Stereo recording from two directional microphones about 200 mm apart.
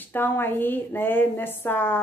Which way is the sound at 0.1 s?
10° left (ahead or behind).